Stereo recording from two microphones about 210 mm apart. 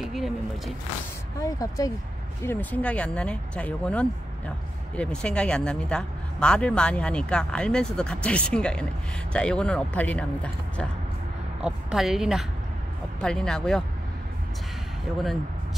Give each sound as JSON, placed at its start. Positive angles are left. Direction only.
{"t": 0.0, "sound": "speech", "side_deg": 0}
{"t": 1.4, "sound": "speech", "side_deg": 15}